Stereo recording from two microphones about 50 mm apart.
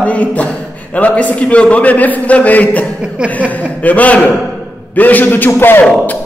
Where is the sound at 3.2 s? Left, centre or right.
Right.